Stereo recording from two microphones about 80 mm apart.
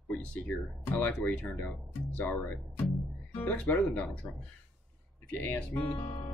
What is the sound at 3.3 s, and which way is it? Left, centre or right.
Speech, centre.